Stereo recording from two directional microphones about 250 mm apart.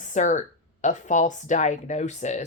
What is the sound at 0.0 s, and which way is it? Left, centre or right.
Speech, left.